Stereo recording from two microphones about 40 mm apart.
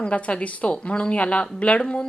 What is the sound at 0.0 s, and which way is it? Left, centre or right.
A woman's voice, left.